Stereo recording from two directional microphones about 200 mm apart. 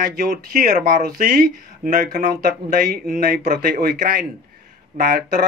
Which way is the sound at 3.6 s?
50° right (ahead or behind).